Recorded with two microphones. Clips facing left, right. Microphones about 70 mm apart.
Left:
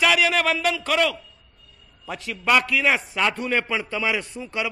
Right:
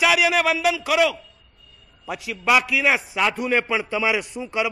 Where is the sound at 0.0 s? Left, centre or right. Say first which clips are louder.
Right 1 dB; centre.